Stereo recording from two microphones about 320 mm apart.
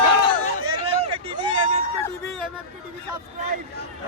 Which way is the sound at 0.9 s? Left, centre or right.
Centre.